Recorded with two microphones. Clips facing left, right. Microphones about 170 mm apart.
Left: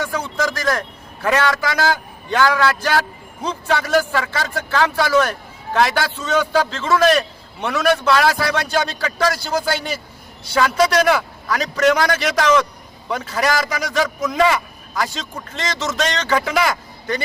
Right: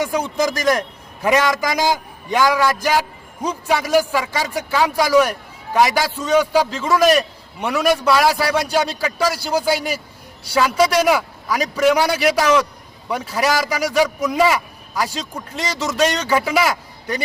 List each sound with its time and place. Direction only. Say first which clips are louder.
0.0 s a man's voice: right 3 dB; 15° right (ahead or behind)